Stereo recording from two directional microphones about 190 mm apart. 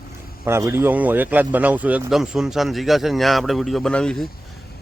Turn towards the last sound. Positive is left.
turn(degrees=5)  # may be behind; listen again after turning